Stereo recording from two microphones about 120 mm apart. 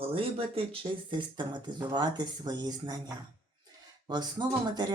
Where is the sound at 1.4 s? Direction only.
40° right (ahead or behind).